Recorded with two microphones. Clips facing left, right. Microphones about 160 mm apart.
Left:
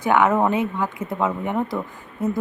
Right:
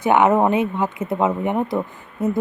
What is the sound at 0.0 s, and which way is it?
Speech, 20° right (ahead or behind).